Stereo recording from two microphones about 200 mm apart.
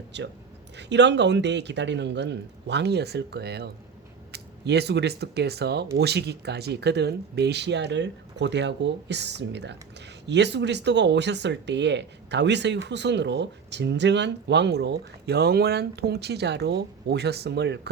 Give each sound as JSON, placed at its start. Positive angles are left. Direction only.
{"t": 0.1, "sound": "speech", "side_deg": -60}